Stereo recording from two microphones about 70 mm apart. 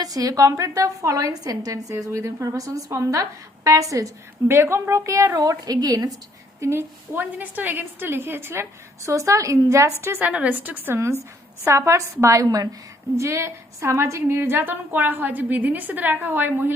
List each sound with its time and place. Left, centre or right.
0.0 s a woman's voice: right
2.6 s a woman's voice: right
2.9 s a woman's voice: right
4.4 s a woman's voice: right
5.4 s a woman's voice: right
6.6 s a woman's voice: right
9.0 s a woman's voice: right
10.2 s a woman's voice: right
10.9 s a woman's voice: right